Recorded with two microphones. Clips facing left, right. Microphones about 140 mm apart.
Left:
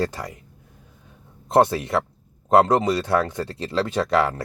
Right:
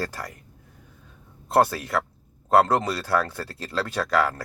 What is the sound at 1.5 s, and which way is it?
Speech, 20° left (ahead or behind).